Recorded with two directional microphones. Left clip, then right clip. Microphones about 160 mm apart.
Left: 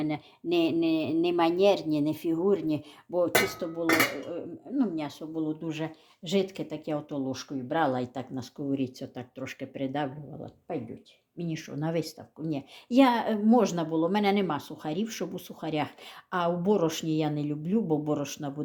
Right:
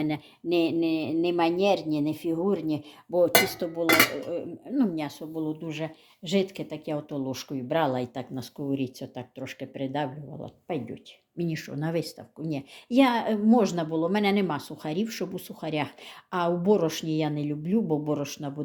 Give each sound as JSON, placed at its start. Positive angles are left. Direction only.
{"t": 0.4, "sound": "speech", "side_deg": 0}
{"t": 3.2, "sound": "speech", "side_deg": -20}
{"t": 5.0, "sound": "speech", "side_deg": -5}
{"t": 7.3, "sound": "speech", "side_deg": -15}
{"t": 10.4, "sound": "speech", "side_deg": -20}